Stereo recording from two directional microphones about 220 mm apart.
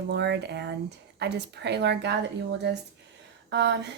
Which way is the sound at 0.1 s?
50° right (ahead or behind).